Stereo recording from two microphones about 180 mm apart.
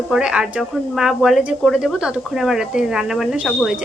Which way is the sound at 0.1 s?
5° right (ahead or behind).